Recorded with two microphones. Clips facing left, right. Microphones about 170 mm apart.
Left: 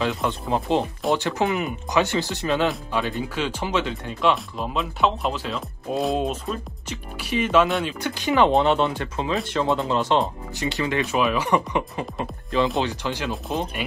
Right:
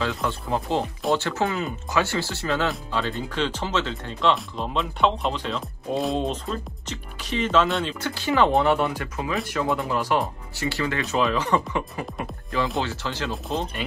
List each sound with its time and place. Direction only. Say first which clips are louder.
0.0 s speech: left 2 dB; 20° left (ahead or behind)
7.6 s speech: left 2 dB; centre (ahead or behind)
8.0 s speech: left 2 dB; 15° left (ahead or behind)